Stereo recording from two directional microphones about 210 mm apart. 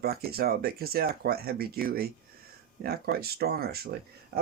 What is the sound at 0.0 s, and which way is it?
Speech, 45° right (ahead or behind).